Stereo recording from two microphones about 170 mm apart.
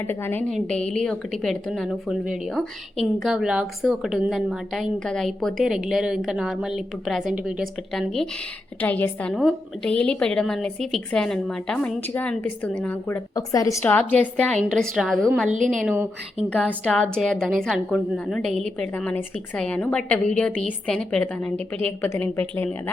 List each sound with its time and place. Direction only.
0.0 s a woman's voice: 10° left (ahead or behind)
15.5 s a woman's voice: 50° right (ahead or behind)
16.8 s a woman's voice: 5° left (ahead or behind)